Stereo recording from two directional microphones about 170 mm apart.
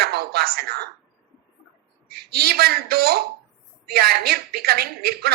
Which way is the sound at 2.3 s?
65° right (ahead or behind).